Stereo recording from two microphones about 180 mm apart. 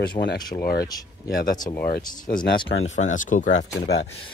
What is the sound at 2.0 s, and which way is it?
Speech, 20° left (ahead or behind).